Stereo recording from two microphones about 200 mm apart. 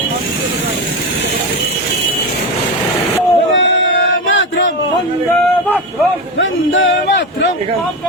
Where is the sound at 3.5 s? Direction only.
65° left (ahead or behind).